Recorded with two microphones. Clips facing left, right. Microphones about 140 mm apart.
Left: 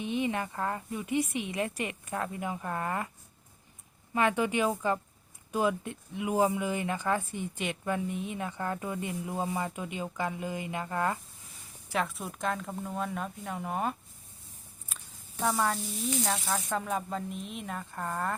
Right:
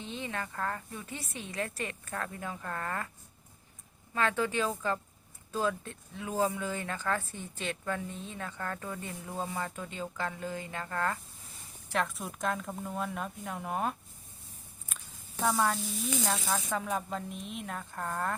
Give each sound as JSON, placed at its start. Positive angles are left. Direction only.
{"t": 0.0, "sound": "speech", "side_deg": 15}
{"t": 4.1, "sound": "speech", "side_deg": 15}
{"t": 11.9, "sound": "speech", "side_deg": 0}
{"t": 14.9, "sound": "a sound", "side_deg": 0}
{"t": 15.4, "sound": "speech", "side_deg": 0}